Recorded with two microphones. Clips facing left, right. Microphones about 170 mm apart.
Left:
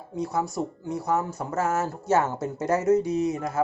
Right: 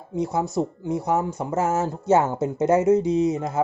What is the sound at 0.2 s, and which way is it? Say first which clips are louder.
Speech: right 4 dB; 20° right (ahead or behind).